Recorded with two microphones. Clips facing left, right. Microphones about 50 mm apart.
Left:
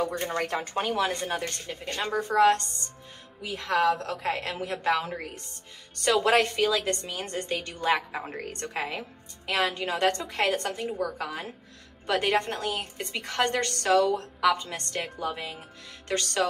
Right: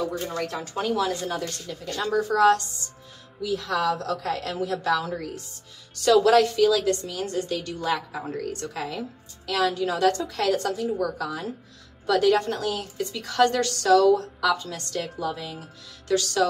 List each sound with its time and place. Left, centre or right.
0.0 s a woman's voice: left